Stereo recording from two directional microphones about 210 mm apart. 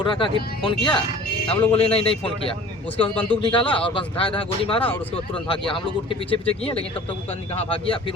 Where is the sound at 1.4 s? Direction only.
25° left (ahead or behind).